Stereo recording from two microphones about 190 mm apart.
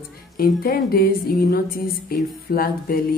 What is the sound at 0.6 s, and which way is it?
Speech, 50° left (ahead or behind).